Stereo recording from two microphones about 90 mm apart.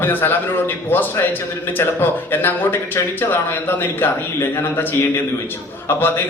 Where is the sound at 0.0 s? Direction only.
25° left (ahead or behind).